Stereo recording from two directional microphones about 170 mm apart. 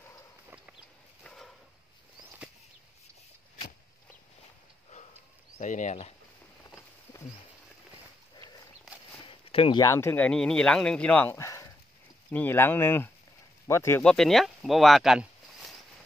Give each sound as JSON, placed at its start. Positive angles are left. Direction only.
{"t": 1.2, "sound": "a sound", "side_deg": 5}
{"t": 5.6, "sound": "speech", "side_deg": 45}
{"t": 9.2, "sound": "speech", "side_deg": 30}
{"t": 14.0, "sound": "speech", "side_deg": 0}